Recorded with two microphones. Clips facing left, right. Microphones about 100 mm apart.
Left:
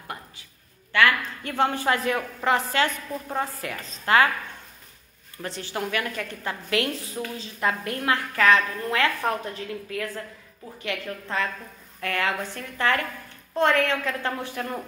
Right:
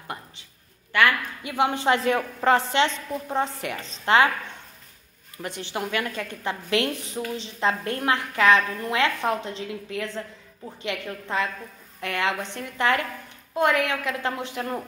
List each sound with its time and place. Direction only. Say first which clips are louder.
0.9 s a woman's voice: even; 15° right (ahead or behind)
5.4 s a woman's voice: even; 20° right (ahead or behind)